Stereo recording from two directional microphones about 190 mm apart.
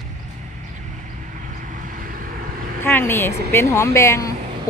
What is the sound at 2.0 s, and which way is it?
Vehicle, 50° right (ahead or behind).